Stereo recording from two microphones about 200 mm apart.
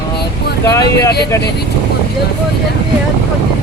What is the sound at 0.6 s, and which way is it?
Speech, 15° left (ahead or behind).